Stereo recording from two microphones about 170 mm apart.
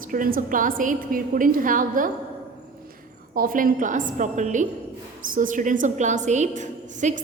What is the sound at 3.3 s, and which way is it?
A woman's voice, 55° right (ahead or behind).